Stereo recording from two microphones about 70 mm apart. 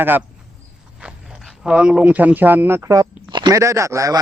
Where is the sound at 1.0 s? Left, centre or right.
Centre.